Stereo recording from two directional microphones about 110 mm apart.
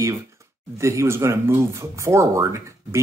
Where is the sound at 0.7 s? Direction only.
25° right (ahead or behind).